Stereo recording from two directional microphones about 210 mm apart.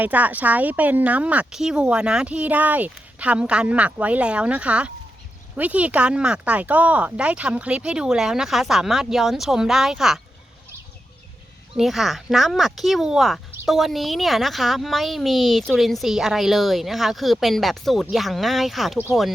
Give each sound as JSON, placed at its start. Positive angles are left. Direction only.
{"t": 0.0, "sound": "speech", "side_deg": -10}
{"t": 11.8, "sound": "speech", "side_deg": 0}